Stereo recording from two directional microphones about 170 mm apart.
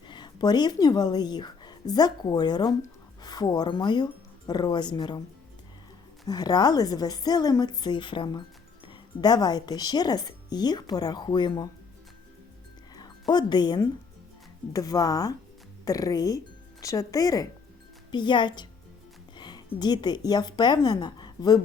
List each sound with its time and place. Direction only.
0.1 s a woman's voice: 25° left (ahead or behind)
6.2 s a woman's voice: 25° left (ahead or behind)
13.0 s a woman's voice: 25° left (ahead or behind)